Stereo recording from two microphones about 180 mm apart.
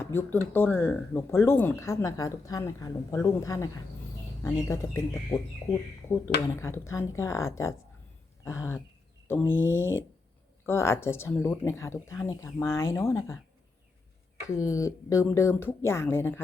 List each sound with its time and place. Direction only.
0.0 s speech: 10° left (ahead or behind)
14.4 s speech: 15° left (ahead or behind)